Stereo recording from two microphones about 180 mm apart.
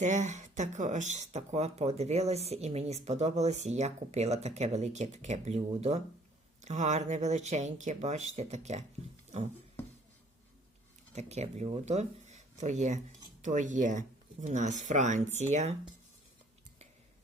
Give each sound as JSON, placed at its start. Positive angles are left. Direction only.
{"t": 0.0, "sound": "speech", "side_deg": -40}
{"t": 11.1, "sound": "speech", "side_deg": -40}